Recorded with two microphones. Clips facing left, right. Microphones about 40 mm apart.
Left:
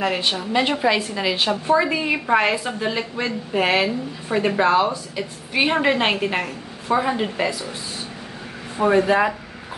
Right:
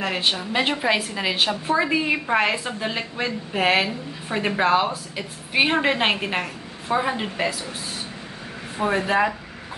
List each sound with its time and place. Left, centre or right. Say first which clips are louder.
0.2 s a woman's voice: left 2 dB; centre
8.7 s speech: left 4 dB; centre